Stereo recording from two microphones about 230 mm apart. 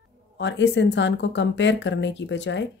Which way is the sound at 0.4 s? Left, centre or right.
Left.